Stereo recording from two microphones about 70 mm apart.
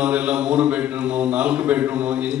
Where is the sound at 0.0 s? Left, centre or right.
Centre.